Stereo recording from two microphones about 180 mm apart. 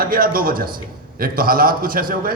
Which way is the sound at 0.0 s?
50° right (ahead or behind).